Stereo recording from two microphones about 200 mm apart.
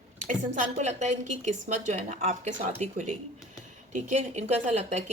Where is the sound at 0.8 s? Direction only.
35° right (ahead or behind).